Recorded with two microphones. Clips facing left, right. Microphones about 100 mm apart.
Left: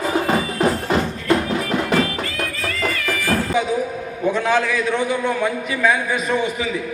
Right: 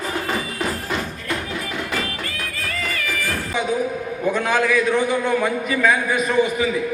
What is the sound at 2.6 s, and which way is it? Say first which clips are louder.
Music: left 3 dB; centre (ahead or behind).